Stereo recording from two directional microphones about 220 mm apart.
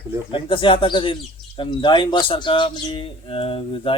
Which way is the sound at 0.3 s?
25° left (ahead or behind).